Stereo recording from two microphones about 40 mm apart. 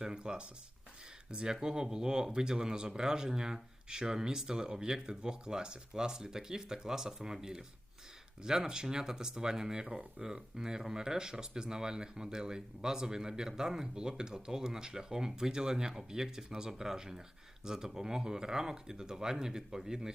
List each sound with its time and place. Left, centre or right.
0.0 s a sound: centre
1.3 s speech: right
8.4 s speech: centre